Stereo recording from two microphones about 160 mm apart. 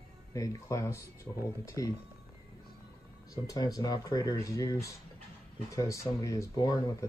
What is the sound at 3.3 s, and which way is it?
Speech, 25° left (ahead or behind).